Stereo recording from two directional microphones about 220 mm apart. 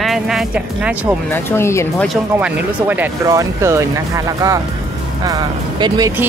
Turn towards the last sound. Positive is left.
turn(degrees=-15)  # may be behind; listen again after turning